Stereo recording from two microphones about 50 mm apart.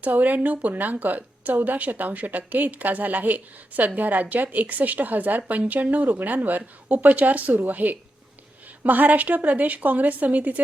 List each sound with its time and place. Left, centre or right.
0.0 s a woman's voice: right